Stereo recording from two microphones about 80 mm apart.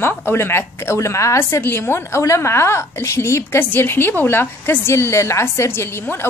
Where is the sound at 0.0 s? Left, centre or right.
Left.